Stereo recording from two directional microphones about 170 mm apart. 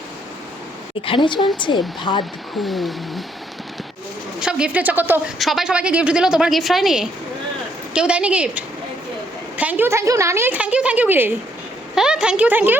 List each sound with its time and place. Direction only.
1.0 s speech: 30° left (ahead or behind)
2.6 s a woman's voice: centre (ahead or behind)
4.4 s a woman's voice: 5° right (ahead or behind)